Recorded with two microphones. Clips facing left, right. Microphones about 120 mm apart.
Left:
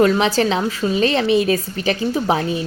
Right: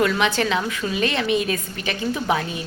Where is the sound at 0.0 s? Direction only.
35° left (ahead or behind).